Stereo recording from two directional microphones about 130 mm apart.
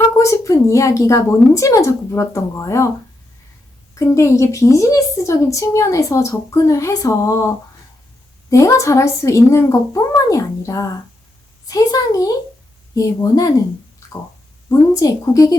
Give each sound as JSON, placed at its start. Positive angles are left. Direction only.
{"t": 0.2, "sound": "a woman's voice", "side_deg": 25}
{"t": 3.9, "sound": "a woman's voice", "side_deg": 25}
{"t": 14.7, "sound": "a woman's voice", "side_deg": 25}